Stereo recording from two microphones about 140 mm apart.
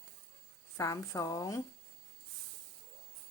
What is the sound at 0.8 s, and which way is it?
Speech, 25° left (ahead or behind).